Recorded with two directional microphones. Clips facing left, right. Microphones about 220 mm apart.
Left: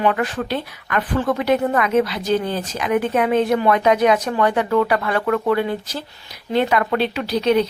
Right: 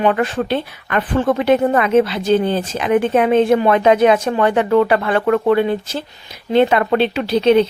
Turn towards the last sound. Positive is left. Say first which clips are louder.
# right 5 dB
turn(degrees=-25)  # may be behind; listen again after turning